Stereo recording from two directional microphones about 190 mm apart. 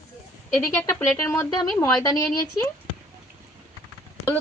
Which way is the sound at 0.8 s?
10° left (ahead or behind).